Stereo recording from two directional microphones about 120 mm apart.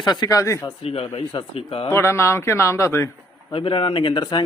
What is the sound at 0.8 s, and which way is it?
Speech, 50° left (ahead or behind).